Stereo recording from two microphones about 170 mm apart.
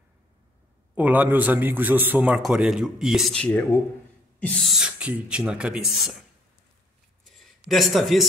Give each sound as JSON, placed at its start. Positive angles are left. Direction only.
{"t": 0.9, "sound": "a man's voice", "side_deg": -10}
{"t": 7.3, "sound": "a man's voice", "side_deg": 0}